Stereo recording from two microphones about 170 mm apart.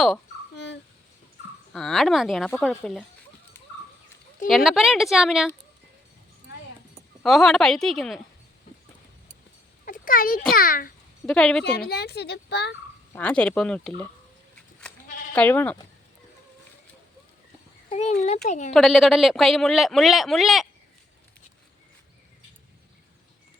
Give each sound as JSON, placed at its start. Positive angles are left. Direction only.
{"t": 0.5, "sound": "babbling", "side_deg": 90}
{"t": 1.7, "sound": "a man's voice", "side_deg": 0}
{"t": 4.4, "sound": "a man's voice", "side_deg": 0}
{"t": 7.2, "sound": "a man's voice", "side_deg": 0}
{"t": 9.8, "sound": "a sound", "side_deg": 55}
{"t": 10.5, "sound": "a child's voice", "side_deg": 55}
{"t": 11.3, "sound": "a man's voice", "side_deg": 5}
{"t": 11.6, "sound": "speech", "side_deg": 70}
{"t": 13.1, "sound": "speech", "side_deg": 5}
{"t": 15.3, "sound": "speech", "side_deg": 10}
{"t": 17.8, "sound": "a woman's voice", "side_deg": 40}
{"t": 18.7, "sound": "a man's voice", "side_deg": 0}